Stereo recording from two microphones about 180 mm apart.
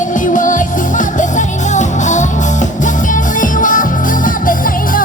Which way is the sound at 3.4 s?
45° left (ahead or behind).